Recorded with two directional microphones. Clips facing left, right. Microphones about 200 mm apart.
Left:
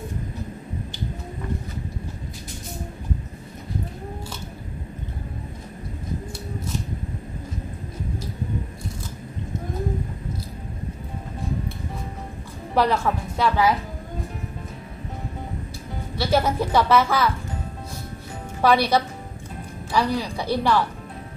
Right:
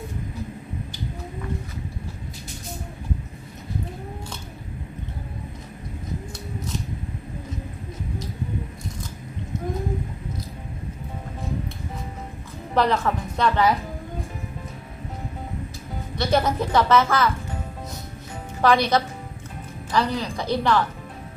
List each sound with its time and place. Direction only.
12.7 s speech: 10° left (ahead or behind)
16.2 s speech: 5° left (ahead or behind)
18.6 s speech: 10° left (ahead or behind)